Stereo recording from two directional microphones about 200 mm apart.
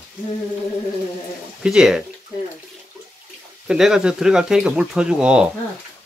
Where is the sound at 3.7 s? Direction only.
Centre (ahead or behind).